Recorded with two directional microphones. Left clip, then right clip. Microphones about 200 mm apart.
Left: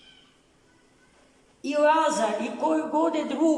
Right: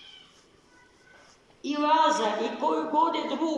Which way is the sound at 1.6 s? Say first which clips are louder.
Left 3 dB; 65° left (ahead or behind).